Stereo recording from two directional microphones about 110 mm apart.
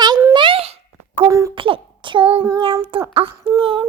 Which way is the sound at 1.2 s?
30° right (ahead or behind).